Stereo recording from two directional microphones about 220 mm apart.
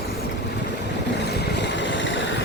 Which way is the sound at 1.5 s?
55° left (ahead or behind).